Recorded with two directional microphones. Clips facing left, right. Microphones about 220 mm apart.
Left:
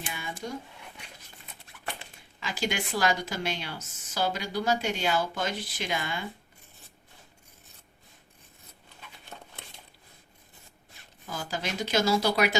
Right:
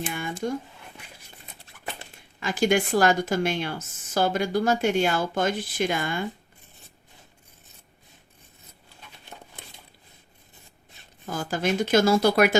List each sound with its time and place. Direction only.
0.0 s speech: 50° right (ahead or behind)
2.4 s a woman's voice: 50° right (ahead or behind)
11.3 s a woman's voice: 50° right (ahead or behind)